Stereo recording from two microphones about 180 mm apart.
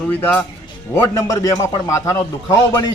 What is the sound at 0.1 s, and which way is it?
A man's voice, 10° left (ahead or behind).